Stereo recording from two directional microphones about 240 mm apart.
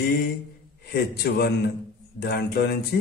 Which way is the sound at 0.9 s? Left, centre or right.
Left.